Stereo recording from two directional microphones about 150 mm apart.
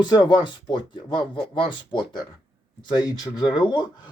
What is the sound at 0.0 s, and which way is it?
Speech, 30° left (ahead or behind).